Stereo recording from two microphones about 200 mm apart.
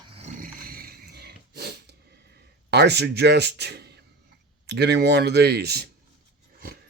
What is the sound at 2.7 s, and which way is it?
Speech, 55° right (ahead or behind).